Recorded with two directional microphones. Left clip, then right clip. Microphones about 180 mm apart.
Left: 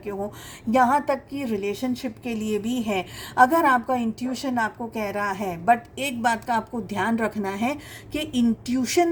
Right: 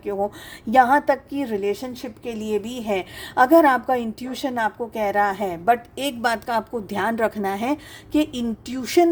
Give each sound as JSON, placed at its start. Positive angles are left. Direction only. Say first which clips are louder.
{"t": 0.7, "sound": "a woman's voice", "louder": "right 4 dB", "side_deg": -50}